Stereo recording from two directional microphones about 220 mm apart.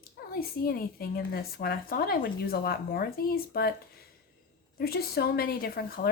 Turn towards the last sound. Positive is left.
turn(degrees=40)  # may be behind; listen again after turning